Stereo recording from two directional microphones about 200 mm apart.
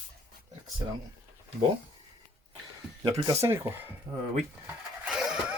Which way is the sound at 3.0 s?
20° right (ahead or behind).